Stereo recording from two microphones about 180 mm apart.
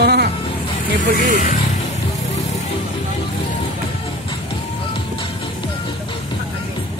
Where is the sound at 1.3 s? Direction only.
50° left (ahead or behind).